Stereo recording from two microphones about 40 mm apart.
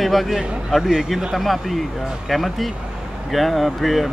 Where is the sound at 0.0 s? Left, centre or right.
Centre.